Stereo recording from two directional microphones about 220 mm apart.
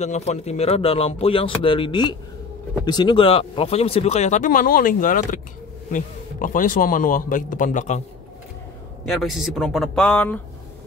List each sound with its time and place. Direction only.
0.0 s a man's voice: 30° left (ahead or behind)
9.0 s speech: centre (ahead or behind)